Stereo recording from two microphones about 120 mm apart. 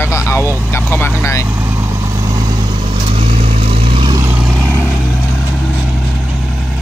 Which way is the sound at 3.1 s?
55° right (ahead or behind).